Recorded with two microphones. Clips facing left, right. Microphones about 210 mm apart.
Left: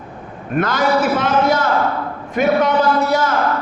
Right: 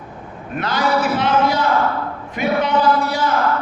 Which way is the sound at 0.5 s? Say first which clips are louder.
Left 5 dB; 50° left (ahead or behind).